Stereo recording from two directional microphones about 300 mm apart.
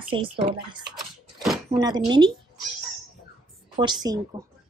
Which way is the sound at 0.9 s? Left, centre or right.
Centre.